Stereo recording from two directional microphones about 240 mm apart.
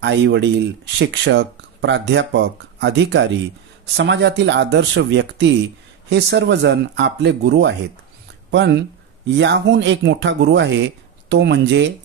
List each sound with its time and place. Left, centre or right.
0.0 s speech: right